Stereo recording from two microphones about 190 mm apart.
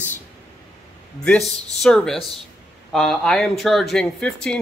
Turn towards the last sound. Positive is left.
turn(degrees=5)  # may be behind; listen again after turning